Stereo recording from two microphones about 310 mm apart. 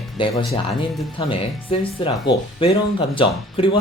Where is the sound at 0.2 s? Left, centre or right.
Centre.